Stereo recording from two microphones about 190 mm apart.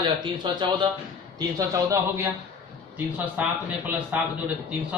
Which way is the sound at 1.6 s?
15° right (ahead or behind).